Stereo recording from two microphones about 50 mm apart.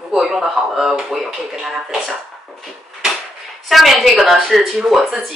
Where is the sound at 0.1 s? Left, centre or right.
Centre.